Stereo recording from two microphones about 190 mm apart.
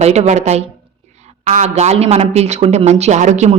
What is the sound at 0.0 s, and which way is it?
A woman's voice, 35° right (ahead or behind).